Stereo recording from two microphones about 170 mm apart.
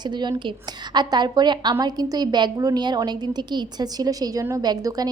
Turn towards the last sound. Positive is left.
turn(degrees=-20)  # may be behind; listen again after turning